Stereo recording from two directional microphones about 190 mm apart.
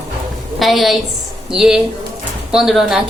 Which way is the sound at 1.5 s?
Centre (ahead or behind).